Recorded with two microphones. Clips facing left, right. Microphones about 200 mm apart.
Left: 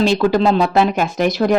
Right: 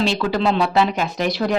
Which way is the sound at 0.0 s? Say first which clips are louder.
Left 5 dB; 45° left (ahead or behind).